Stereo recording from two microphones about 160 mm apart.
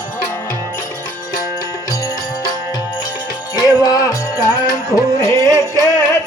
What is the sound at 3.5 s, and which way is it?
Music, 25° left (ahead or behind).